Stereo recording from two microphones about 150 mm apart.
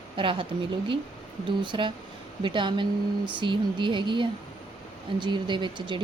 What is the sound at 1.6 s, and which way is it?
Speech, 35° right (ahead or behind).